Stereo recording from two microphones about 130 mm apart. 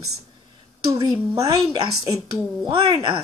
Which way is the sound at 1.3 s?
25° right (ahead or behind).